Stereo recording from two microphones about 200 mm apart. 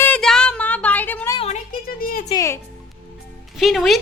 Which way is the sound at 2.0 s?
45° left (ahead or behind).